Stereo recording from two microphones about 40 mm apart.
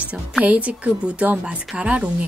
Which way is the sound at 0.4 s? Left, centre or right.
Right.